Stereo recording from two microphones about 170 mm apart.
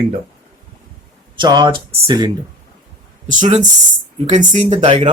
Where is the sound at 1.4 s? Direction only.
25° right (ahead or behind).